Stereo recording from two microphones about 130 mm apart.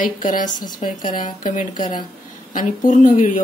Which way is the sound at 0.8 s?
90° left.